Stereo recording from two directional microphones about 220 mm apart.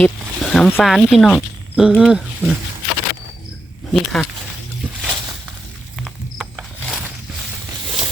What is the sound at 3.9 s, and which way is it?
Speech, centre (ahead or behind).